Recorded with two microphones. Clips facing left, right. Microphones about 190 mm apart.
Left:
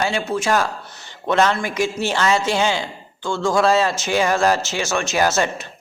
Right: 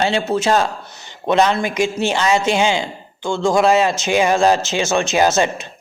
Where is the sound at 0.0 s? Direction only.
25° right (ahead or behind).